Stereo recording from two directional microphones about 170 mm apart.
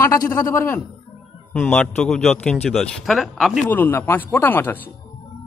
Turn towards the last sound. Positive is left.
turn(degrees=10)  # may be behind; listen again after turning